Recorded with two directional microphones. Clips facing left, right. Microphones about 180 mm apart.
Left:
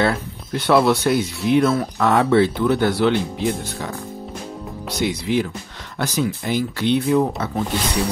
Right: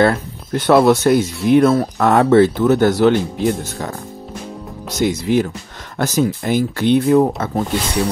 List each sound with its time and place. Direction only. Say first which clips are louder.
0.0 s speech: right 5 dB; 45° right (ahead or behind)
4.8 s speech: right 5 dB; 45° right (ahead or behind)